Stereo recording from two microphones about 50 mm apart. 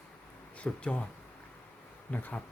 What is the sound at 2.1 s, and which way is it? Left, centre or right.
Speech, left.